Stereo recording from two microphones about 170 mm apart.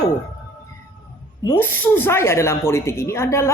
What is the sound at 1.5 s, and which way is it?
A woman's voice, 10° left (ahead or behind).